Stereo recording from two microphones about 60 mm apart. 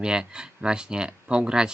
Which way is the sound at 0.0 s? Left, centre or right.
Centre.